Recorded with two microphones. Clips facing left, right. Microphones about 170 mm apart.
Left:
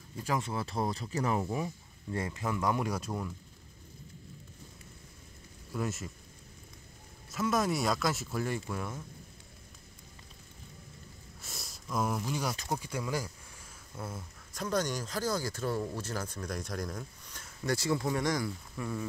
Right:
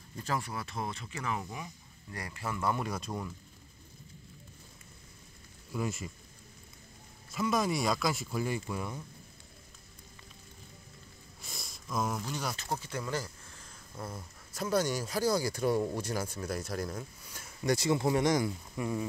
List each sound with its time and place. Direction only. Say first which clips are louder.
0.1 s speech: left 2 dB; 10° left (ahead or behind)
0.4 s speech: left 4 dB; 25° left (ahead or behind)
2.1 s speech: left 4 dB; 20° left (ahead or behind); by 3.3 s 5° left (ahead or behind)
5.7 s speech: even; centre (ahead or behind)
7.2 s speech: even; centre (ahead or behind)
11.4 s speech: even; centre (ahead or behind)
14.5 s speech: right 2 dB; 5° right (ahead or behind)